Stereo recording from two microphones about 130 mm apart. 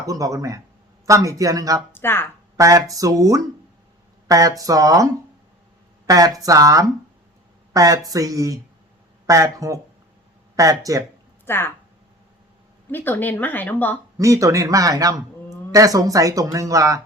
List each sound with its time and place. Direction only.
0.0 s speech: 25° right (ahead or behind)
1.9 s speech: 15° left (ahead or behind)
2.6 s speech: 25° right (ahead or behind)
6.1 s speech: 25° right (ahead or behind)
11.4 s speech: 15° left (ahead or behind)
12.9 s speech: 15° left (ahead or behind)
14.2 s speech: 25° right (ahead or behind)